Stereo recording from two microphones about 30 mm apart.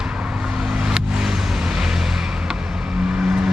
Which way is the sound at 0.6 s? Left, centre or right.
Centre.